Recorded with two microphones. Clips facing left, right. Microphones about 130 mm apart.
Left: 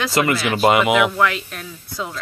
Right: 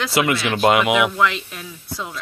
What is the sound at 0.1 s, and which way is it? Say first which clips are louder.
Speech: right 1 dB; centre (ahead or behind).